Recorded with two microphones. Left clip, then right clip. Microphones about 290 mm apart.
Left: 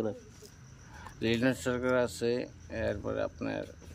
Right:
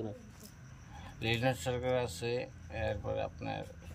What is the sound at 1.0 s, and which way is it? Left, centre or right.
Speech, centre.